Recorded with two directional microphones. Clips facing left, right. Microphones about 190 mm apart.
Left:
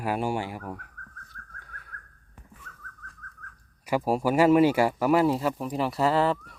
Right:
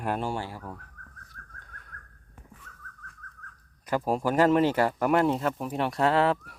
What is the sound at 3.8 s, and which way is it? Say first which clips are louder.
Speech: left 2 dB; 10° left (ahead or behind).